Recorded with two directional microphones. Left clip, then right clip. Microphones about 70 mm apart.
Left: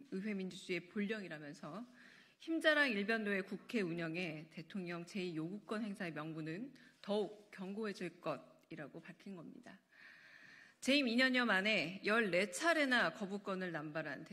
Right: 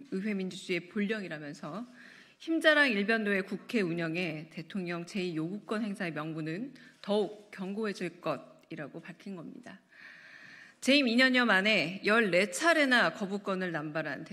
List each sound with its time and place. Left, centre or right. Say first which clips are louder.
0.1 s a man's voice: right 9 dB; right
3.4 s a man's voice: right 8 dB; right
4.3 s speech: right 9 dB; right
4.7 s a man's voice: right 9 dB; right
10.8 s a man's voice: right 8 dB; right